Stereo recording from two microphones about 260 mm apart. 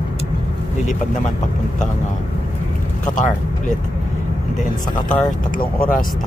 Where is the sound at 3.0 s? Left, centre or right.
Left.